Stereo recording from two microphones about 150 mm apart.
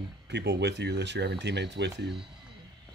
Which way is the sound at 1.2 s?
90° right.